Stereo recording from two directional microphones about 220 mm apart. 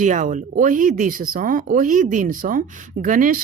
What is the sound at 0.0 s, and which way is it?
Speech, 35° right (ahead or behind).